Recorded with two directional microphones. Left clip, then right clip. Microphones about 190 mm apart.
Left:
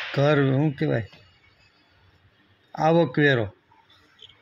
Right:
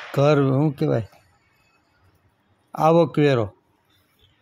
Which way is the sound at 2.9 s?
20° right (ahead or behind).